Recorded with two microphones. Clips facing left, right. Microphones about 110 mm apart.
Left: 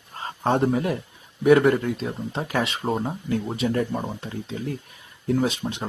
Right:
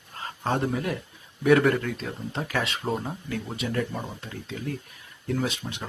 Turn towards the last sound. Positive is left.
turn(degrees=25)  # may be behind; listen again after turning